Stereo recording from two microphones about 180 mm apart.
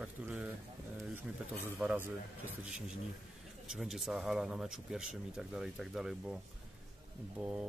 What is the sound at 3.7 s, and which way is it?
Speech, centre (ahead or behind).